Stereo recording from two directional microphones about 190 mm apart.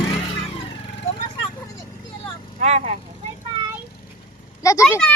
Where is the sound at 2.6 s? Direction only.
35° right (ahead or behind).